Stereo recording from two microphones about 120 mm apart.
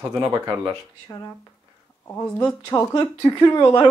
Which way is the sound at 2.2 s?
15° left (ahead or behind).